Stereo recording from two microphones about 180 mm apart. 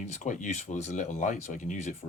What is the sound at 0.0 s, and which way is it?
Speech, 40° left (ahead or behind).